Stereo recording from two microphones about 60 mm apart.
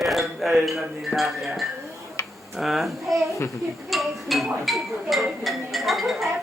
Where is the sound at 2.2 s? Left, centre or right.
Left.